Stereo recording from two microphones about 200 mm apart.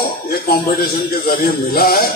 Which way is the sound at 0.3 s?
50° left (ahead or behind).